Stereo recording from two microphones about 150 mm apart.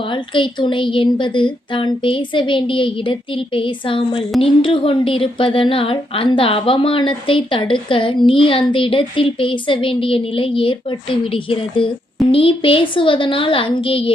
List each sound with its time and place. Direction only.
0.0 s a woman's voice: 35° left (ahead or behind)